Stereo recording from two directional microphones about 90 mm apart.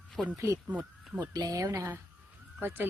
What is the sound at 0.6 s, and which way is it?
Speech, 10° right (ahead or behind).